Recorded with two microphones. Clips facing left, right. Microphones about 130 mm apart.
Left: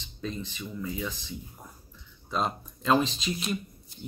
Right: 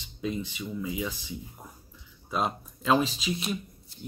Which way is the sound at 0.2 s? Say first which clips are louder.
Right 3 dB; 10° right (ahead or behind).